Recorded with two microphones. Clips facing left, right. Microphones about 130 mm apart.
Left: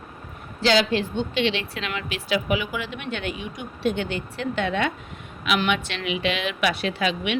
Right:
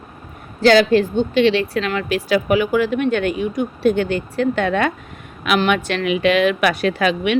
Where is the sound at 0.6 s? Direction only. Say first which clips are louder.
Right 8 dB; 45° right (ahead or behind).